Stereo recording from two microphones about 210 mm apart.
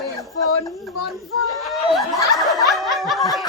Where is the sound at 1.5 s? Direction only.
Centre (ahead or behind).